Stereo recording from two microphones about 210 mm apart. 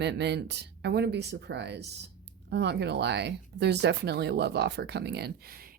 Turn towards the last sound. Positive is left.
turn(degrees=-45)  # may be behind; listen again after turning